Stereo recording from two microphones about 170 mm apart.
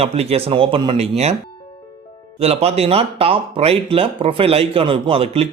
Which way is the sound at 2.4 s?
35° right (ahead or behind).